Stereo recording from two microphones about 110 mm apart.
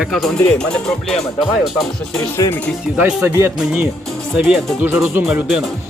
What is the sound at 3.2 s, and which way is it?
Speech, 25° right (ahead or behind).